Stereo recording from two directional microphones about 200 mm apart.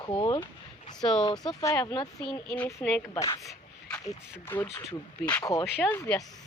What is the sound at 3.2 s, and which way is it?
Speech, 15° left (ahead or behind).